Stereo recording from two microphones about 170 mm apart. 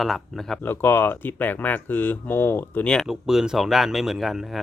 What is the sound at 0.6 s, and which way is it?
Speech, 10° left (ahead or behind).